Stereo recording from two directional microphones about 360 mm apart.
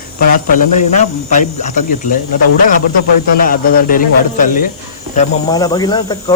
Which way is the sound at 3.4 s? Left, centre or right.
Left.